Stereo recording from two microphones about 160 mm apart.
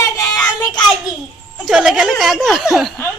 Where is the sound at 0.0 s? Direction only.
25° left (ahead or behind).